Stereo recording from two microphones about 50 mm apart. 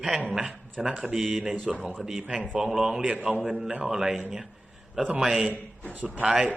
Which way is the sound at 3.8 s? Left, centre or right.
Centre.